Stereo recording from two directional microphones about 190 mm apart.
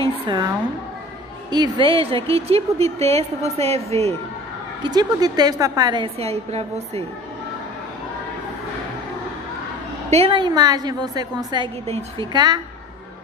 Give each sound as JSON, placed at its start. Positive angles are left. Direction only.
{"t": 0.3, "sound": "a woman's voice", "side_deg": -25}
{"t": 1.5, "sound": "speech", "side_deg": -25}
{"t": 4.9, "sound": "a woman's voice", "side_deg": -20}
{"t": 10.0, "sound": "a woman's voice", "side_deg": -30}